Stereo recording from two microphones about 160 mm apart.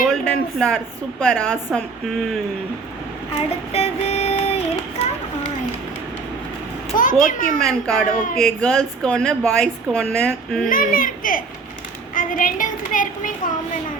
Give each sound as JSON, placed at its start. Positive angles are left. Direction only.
{"t": 0.0, "sound": "a sound", "side_deg": 5}
{"t": 1.2, "sound": "a woman's voice", "side_deg": 5}
{"t": 3.7, "sound": "female singing", "side_deg": 40}
{"t": 6.9, "sound": "a woman's voice", "side_deg": 55}
{"t": 7.6, "sound": "a woman's voice", "side_deg": 5}
{"t": 8.0, "sound": "a woman's voice", "side_deg": 55}
{"t": 8.4, "sound": "a woman's voice", "side_deg": 5}
{"t": 10.7, "sound": "a woman's voice", "side_deg": 60}